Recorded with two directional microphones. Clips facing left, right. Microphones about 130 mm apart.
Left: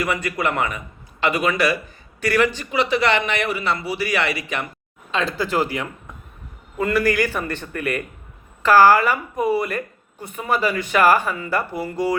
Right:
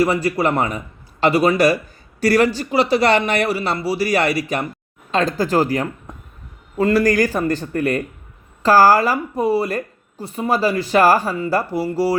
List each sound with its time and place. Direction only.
0.0 s speech: 30° right (ahead or behind)